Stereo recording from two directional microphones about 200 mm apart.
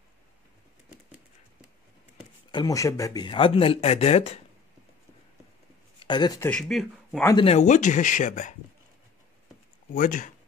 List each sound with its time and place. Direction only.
2.5 s speech: 15° left (ahead or behind)
5.9 s speech: 20° left (ahead or behind)
6.5 s speech: centre (ahead or behind)
7.2 s speech: 25° left (ahead or behind)
7.5 s speech: 40° left (ahead or behind)
9.9 s speech: 40° left (ahead or behind)